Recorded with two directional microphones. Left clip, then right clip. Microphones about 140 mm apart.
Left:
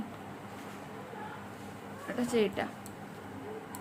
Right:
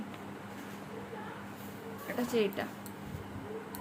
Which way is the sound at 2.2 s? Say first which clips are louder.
Left 2 dB; 25° left (ahead or behind).